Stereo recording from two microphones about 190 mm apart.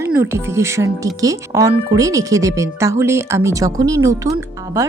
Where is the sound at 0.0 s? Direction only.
15° right (ahead or behind).